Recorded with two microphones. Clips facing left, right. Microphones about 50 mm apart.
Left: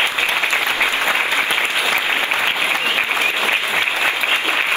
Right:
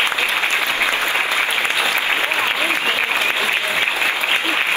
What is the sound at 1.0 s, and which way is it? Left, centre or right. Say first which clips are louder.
Applause: left 1 dB; left.